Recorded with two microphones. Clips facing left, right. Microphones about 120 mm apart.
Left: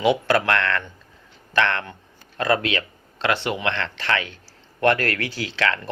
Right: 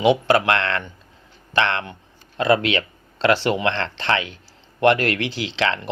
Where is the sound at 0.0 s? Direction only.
20° right (ahead or behind).